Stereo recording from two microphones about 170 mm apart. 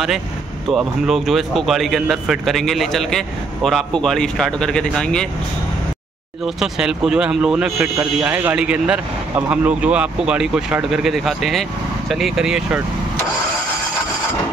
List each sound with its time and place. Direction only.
0.7 s a man's voice: centre (ahead or behind)
6.4 s a man's voice: 5° right (ahead or behind)